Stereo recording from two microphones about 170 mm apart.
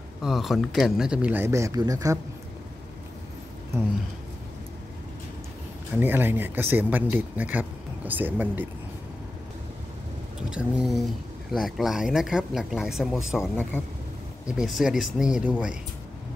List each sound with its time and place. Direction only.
0.2 s speech: centre (ahead or behind); by 2.1 s 20° right (ahead or behind)
5.9 s speech: 10° right (ahead or behind)
10.5 s speech: 5° right (ahead or behind)
13.7 s speech: 15° left (ahead or behind)
14.4 s speech: 5° right (ahead or behind)